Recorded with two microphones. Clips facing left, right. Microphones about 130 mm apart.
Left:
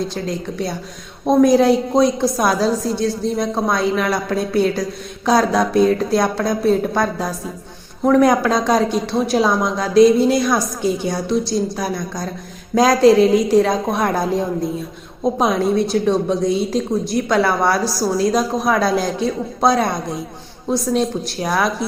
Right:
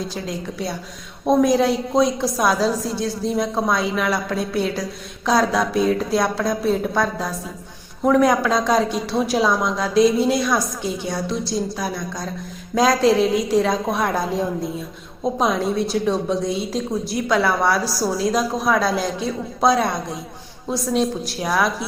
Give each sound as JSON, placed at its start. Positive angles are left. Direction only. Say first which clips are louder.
{"t": 0.1, "sound": "a woman's voice", "louder": "left 4 dB", "side_deg": -5}